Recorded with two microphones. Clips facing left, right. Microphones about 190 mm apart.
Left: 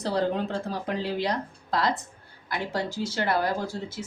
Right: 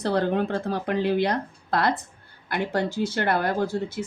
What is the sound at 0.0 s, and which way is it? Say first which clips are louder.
Speech: right 3 dB; 60° right (ahead or behind).